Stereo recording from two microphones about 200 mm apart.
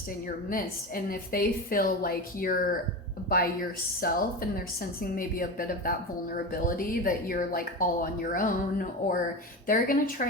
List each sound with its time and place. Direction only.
0.5 s a woman's voice: 45° left (ahead or behind)